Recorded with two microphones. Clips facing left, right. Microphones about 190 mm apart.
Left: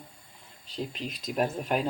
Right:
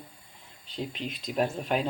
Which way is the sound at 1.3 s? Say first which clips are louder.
Even; 5° left (ahead or behind).